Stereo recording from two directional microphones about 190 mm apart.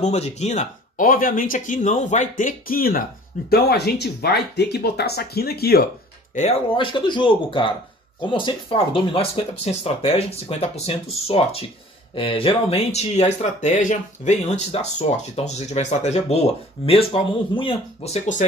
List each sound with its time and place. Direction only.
0.0 s speech: 35° left (ahead or behind); by 5.9 s 55° left (ahead or behind)
6.3 s speech: 30° left (ahead or behind)